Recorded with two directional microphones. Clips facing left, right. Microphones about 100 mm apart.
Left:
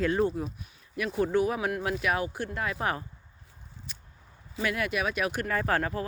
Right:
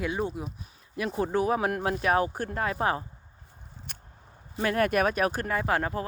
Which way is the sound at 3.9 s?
60° right (ahead or behind).